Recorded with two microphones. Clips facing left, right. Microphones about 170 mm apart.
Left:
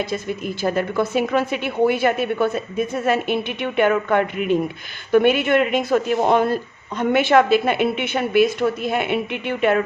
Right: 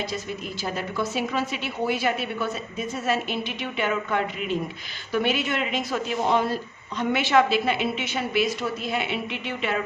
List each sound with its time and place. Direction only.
0.0 s a woman's voice: 55° left (ahead or behind)